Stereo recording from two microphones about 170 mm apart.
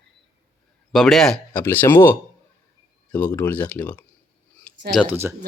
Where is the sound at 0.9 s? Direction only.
Centre (ahead or behind).